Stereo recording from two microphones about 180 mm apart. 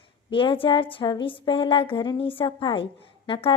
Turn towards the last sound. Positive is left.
turn(degrees=30)  # may be behind; listen again after turning